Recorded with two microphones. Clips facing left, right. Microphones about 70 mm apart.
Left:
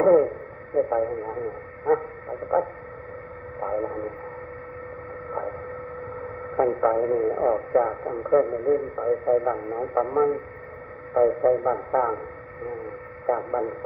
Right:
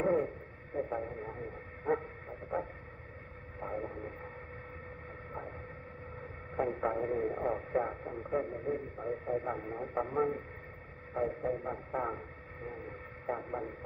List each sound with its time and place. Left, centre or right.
0.0 s radio: left
0.7 s speech: left
3.5 s speech: left
6.5 s speech: left
13.3 s speech: left